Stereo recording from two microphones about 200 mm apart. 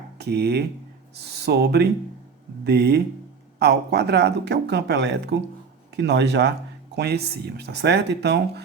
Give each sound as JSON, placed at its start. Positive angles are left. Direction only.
{"t": 0.2, "sound": "speech", "side_deg": -55}